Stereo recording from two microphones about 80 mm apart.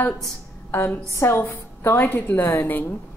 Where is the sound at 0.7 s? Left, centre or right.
Left.